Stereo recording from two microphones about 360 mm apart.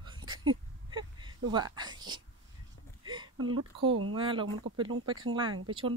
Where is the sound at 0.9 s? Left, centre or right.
Centre.